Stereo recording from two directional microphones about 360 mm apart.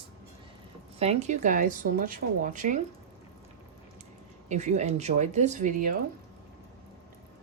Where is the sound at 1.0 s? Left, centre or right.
Centre.